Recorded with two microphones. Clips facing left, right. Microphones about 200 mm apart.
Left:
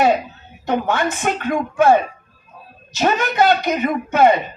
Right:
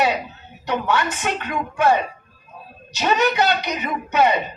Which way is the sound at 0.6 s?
50° left (ahead or behind).